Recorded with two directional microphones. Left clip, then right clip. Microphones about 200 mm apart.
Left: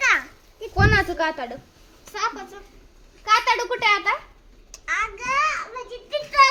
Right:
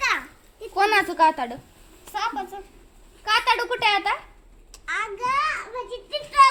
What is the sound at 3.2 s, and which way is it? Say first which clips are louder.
Speech: left 2 dB; 30° right (ahead or behind).